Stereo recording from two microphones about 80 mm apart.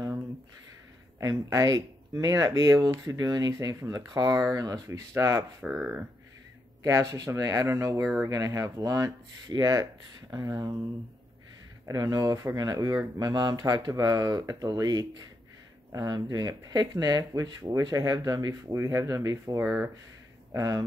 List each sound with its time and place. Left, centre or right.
1.2 s speech: right
5.7 s speech: centre
6.8 s speech: right
8.3 s speech: right
11.9 s speech: right
19.6 s speech: right
20.5 s speech: right